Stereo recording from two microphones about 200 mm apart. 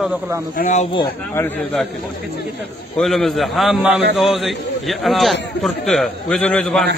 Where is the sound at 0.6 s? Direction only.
40° left (ahead or behind).